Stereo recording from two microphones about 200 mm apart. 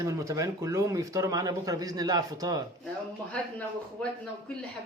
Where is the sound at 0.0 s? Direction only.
15° right (ahead or behind).